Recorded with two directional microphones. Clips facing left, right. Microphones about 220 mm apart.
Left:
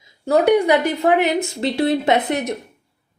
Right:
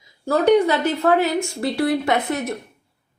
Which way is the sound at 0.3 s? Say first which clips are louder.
Left 1 dB; 10° left (ahead or behind).